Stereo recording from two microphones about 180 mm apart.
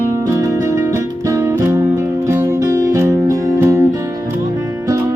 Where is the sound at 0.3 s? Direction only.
15° right (ahead or behind).